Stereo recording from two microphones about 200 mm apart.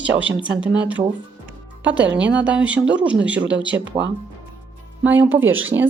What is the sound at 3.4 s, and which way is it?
Speech, 65° right (ahead or behind).